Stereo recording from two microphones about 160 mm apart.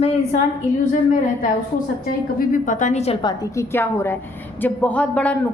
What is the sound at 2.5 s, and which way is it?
Speech, 50° left (ahead or behind).